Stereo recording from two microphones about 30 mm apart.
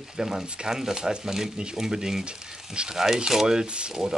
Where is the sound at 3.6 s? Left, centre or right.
Right.